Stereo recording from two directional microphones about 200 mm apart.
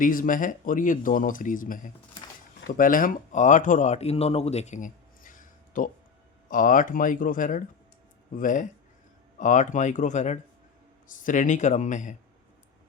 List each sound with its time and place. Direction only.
0.0 s speech: 40° left (ahead or behind)